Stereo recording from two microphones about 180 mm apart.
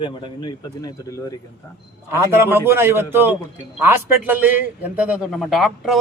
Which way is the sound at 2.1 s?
15° right (ahead or behind).